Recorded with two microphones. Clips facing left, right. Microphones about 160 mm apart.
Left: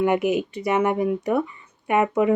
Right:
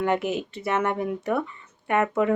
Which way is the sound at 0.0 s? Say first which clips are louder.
Left 4 dB; 15° left (ahead or behind).